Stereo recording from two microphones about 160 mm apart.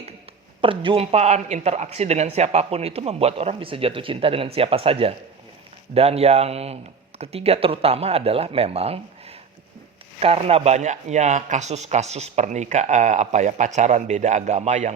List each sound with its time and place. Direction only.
0.6 s speech: 30° right (ahead or behind)